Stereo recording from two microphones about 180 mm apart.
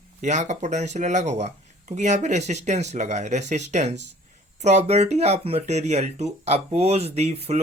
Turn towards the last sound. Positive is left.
turn(degrees=-35)  # may be behind; listen again after turning